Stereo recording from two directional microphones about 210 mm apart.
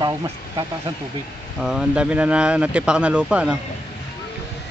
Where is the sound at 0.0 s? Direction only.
20° right (ahead or behind).